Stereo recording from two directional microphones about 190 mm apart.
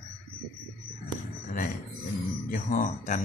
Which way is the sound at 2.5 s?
45° left (ahead or behind).